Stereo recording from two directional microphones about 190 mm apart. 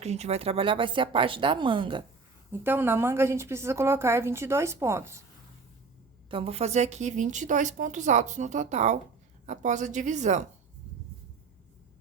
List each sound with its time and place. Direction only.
0.0 s speech: 35° right (ahead or behind)
2.5 s a woman's voice: 10° right (ahead or behind)
6.3 s speech: 30° right (ahead or behind)